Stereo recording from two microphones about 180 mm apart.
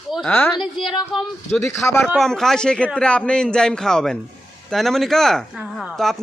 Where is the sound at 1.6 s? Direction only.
15° left (ahead or behind).